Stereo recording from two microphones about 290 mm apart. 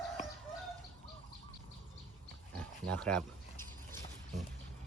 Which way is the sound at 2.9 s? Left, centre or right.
Centre.